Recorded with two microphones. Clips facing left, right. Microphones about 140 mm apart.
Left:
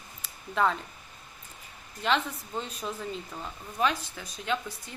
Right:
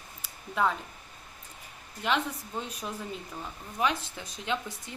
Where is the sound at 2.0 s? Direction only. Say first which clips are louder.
Left 1 dB; 10° right (ahead or behind).